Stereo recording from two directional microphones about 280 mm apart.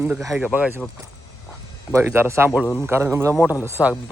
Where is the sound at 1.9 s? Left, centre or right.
Centre.